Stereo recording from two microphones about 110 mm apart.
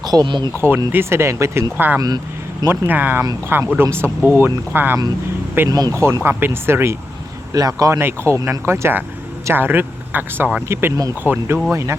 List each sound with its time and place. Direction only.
0.0 s speech: 35° right (ahead or behind)
0.5 s speech: 20° right (ahead or behind)
2.0 s a sound: 35° right (ahead or behind)
2.6 s speech: 15° right (ahead or behind)
5.6 s speech: 35° right (ahead or behind)
7.5 s speech: 35° right (ahead or behind)